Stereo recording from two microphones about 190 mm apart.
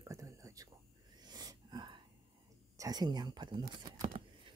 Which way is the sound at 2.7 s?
20° right (ahead or behind).